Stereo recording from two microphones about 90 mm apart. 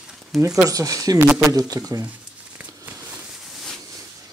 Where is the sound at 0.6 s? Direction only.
40° right (ahead or behind).